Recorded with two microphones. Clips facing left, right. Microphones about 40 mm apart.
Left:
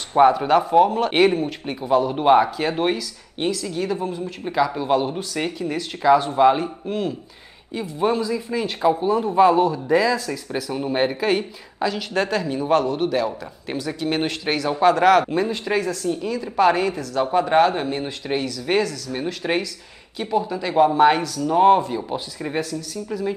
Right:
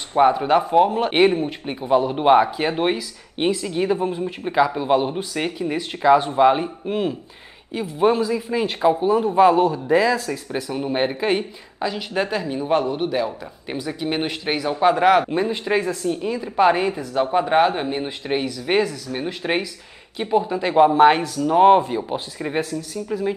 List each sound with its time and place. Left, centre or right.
0.2 s speech: centre
0.5 s a man's voice: centre
10.5 s a man's voice: centre; by 21.5 s right
21.5 s speech: centre
23.1 s a man's voice: centre